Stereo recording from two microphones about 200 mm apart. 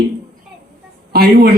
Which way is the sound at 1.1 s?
50° right (ahead or behind).